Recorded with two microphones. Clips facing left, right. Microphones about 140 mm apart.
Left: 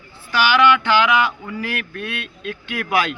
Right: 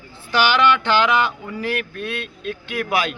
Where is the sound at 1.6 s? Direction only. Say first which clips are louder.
Right 3 dB; 20° right (ahead or behind).